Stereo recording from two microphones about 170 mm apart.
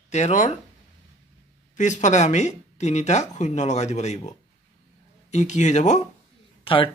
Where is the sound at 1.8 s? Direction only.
45° left (ahead or behind).